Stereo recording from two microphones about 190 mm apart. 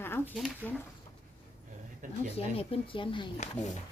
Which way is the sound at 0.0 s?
10° left (ahead or behind).